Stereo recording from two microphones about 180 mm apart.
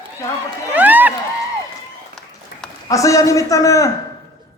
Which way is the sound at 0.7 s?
10° right (ahead or behind).